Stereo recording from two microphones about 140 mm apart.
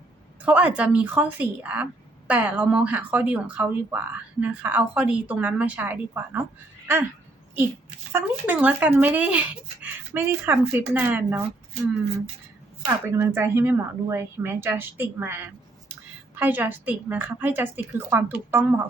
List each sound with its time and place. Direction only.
0.4 s speech: 10° right (ahead or behind)
8.1 s speech: 10° right (ahead or behind)
13.1 s speech: 20° right (ahead or behind)